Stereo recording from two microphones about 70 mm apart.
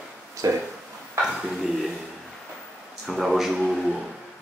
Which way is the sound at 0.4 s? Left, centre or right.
Right.